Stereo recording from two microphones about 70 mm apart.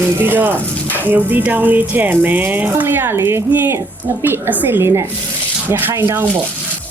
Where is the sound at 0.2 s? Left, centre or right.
Right.